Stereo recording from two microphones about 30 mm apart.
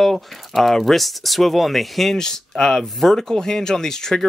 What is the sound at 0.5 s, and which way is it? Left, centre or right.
Speech, centre.